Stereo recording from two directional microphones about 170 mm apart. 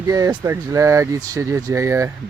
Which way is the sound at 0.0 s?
20° right (ahead or behind).